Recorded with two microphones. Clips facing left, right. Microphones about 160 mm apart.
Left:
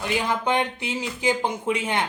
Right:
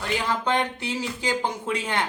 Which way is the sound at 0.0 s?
15° left (ahead or behind).